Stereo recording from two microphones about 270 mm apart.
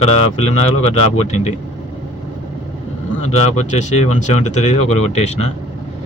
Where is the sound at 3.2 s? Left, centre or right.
Left.